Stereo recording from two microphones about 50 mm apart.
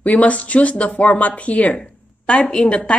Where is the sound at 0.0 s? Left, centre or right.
Left.